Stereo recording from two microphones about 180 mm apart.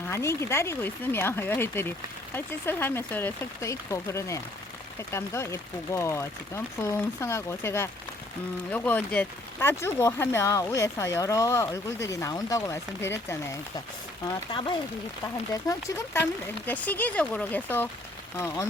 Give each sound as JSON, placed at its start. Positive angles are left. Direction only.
{"t": 0.1, "sound": "speech", "side_deg": 15}